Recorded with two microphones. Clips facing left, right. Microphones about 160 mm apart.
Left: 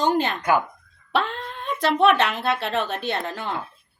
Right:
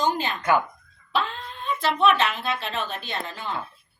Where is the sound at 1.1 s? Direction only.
65° left (ahead or behind).